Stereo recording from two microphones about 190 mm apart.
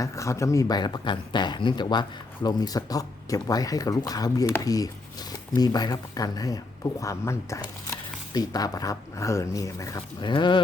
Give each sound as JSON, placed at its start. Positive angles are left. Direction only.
{"t": 0.0, "sound": "speech", "side_deg": 15}